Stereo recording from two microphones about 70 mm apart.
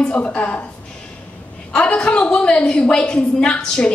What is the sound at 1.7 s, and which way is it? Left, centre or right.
A woman's voice, centre.